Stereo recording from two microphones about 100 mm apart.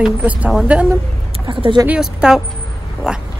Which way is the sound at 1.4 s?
55° right (ahead or behind).